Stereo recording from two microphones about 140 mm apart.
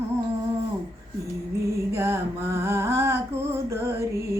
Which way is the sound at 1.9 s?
20° right (ahead or behind).